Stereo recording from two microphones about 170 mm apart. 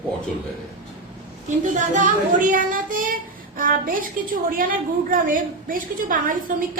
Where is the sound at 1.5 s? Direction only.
45° right (ahead or behind).